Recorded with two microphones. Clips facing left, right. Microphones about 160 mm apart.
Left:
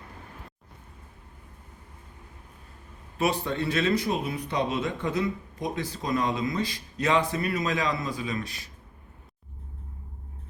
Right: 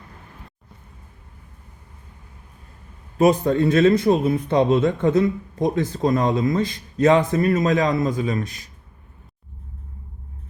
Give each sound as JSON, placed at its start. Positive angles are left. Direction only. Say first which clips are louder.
{"t": 3.2, "sound": "speech", "louder": "right 10 dB", "side_deg": -45}